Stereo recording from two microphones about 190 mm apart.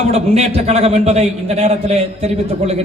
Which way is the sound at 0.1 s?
35° right (ahead or behind).